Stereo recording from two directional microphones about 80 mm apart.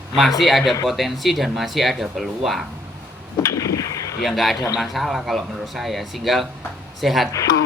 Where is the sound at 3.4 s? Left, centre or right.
Left.